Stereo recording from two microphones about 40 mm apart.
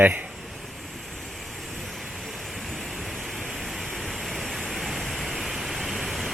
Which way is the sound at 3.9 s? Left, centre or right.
Centre.